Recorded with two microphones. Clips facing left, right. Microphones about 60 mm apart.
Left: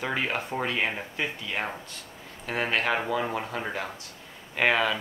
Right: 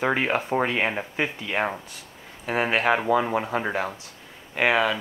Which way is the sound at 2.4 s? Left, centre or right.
Centre.